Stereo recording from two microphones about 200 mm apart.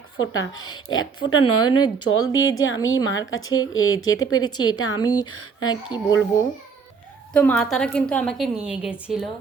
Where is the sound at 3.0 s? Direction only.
75° left (ahead or behind); by 4.5 s 90° left.